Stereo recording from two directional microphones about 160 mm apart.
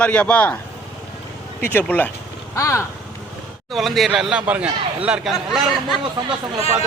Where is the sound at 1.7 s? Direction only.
10° left (ahead or behind).